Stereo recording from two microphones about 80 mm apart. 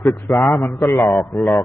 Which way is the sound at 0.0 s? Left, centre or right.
Left.